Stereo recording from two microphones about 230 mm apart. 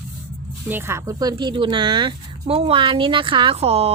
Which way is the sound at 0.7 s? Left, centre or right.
Centre.